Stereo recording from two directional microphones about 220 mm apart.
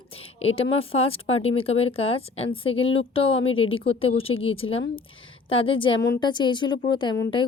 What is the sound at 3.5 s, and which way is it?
Speech, 65° left (ahead or behind).